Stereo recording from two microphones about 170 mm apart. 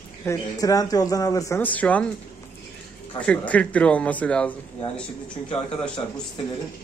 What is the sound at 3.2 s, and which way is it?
Speech, 10° left (ahead or behind).